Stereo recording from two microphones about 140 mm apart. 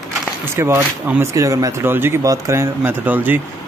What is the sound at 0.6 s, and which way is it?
Speech, 15° right (ahead or behind).